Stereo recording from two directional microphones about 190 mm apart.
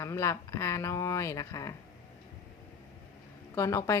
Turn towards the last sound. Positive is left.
turn(degrees=15)  # may be behind; listen again after turning